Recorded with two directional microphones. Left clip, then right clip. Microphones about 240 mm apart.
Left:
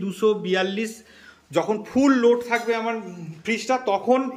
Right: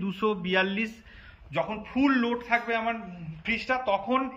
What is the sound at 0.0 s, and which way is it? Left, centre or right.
Speech, centre.